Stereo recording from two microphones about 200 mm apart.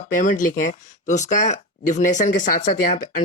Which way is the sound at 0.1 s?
40° left (ahead or behind).